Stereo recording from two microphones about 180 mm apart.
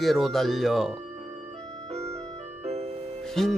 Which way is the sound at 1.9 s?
35° right (ahead or behind).